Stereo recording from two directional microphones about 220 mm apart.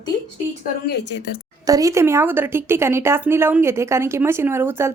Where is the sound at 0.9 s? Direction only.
50° left (ahead or behind).